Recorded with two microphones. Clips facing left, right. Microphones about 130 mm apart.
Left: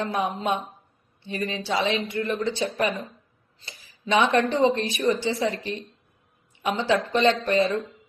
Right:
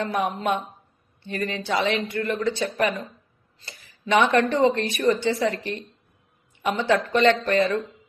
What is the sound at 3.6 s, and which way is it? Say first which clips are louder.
Speech: even; 55° right (ahead or behind).